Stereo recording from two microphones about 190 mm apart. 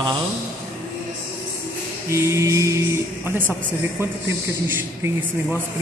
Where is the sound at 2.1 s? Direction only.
15° right (ahead or behind).